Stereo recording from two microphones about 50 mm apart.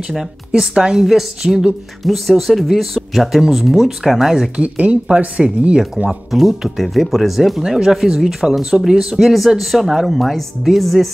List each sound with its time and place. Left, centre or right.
0.1 s speech: centre
4.6 s speech: right
6.0 s speech: centre